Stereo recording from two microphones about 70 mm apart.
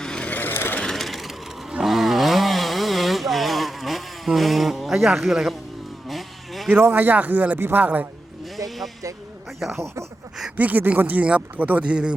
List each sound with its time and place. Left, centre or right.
0.0 s vehicle: centre
0.3 s vehicle: left
0.8 s vehicle: centre
1.7 s chainsaw: centre
6.1 s a sound: centre
6.7 s speech: right
8.5 s a sound: centre
9.6 s speech: centre
9.8 s speech: right
10.6 s speech: right